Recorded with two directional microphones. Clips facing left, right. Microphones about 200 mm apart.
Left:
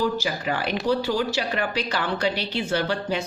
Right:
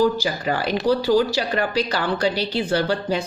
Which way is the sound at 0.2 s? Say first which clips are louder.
Right 3 dB; 35° right (ahead or behind).